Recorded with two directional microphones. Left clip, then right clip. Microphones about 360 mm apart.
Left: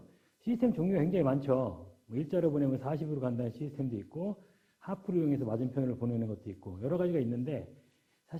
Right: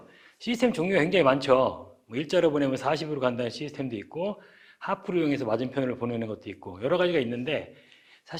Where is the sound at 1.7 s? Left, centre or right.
Centre.